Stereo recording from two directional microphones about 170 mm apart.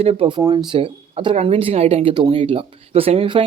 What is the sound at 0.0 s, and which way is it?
Speech, 35° right (ahead or behind).